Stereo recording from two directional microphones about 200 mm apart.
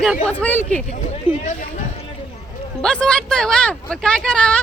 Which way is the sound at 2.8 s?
5° left (ahead or behind).